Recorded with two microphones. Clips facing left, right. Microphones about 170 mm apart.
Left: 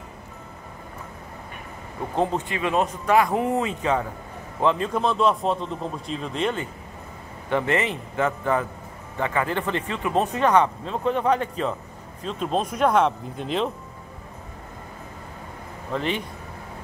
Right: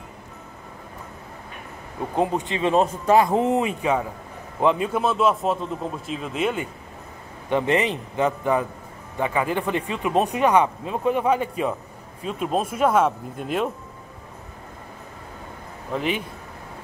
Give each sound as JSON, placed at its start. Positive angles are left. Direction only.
{"t": 2.1, "sound": "speech", "side_deg": -10}
{"t": 2.5, "sound": "a man's voice", "side_deg": -30}
{"t": 15.9, "sound": "speech", "side_deg": -5}